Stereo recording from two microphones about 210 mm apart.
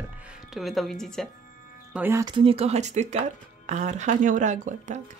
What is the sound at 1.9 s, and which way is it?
Speech, 10° right (ahead or behind).